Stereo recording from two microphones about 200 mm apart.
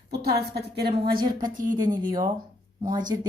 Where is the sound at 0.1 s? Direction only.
55° right (ahead or behind).